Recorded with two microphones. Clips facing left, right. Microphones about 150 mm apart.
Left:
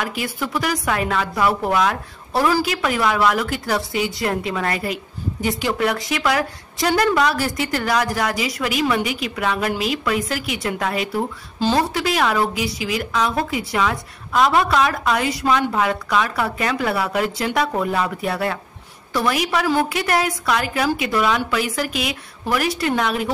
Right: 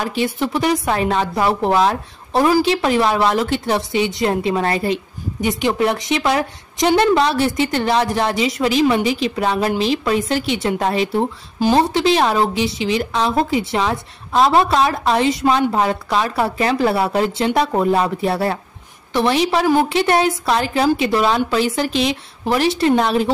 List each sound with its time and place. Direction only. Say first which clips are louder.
0.0 s a woman's voice: right 5 dB; 30° right (ahead or behind)